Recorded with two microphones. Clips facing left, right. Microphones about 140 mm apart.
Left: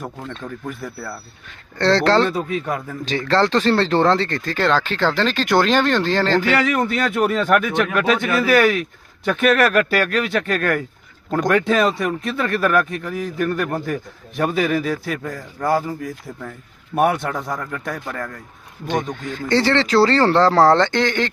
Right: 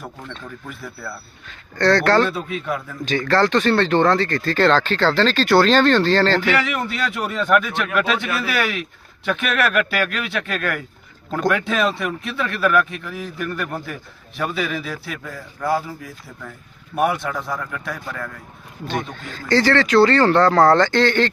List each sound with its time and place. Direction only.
1.8 s speech: 25° left (ahead or behind)
2.3 s speech: 45° left (ahead or behind)
3.0 s speech: 25° left (ahead or behind)
6.7 s speech: 45° left (ahead or behind)
19.4 s speech: 20° left (ahead or behind)